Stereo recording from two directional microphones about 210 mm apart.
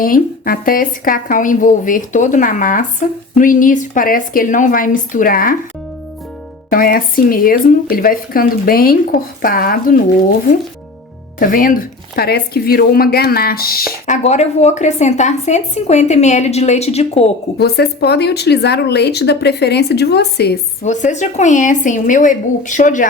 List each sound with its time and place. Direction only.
0.0 s a woman's voice: 45° left (ahead or behind)
6.7 s speech: 45° left (ahead or behind)
11.3 s speech: 40° left (ahead or behind)
14.1 s a woman's voice: 30° left (ahead or behind)
17.6 s speech: 50° left (ahead or behind)
20.8 s a woman's voice: 35° left (ahead or behind)